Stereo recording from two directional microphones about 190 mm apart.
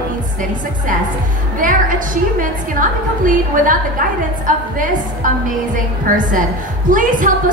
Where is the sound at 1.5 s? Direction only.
45° right (ahead or behind).